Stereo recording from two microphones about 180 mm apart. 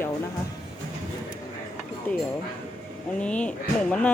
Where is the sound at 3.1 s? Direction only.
5° left (ahead or behind).